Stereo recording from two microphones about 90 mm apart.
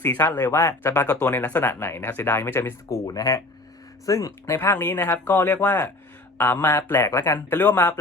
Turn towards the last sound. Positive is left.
turn(degrees=20)  # may be behind; listen again after turning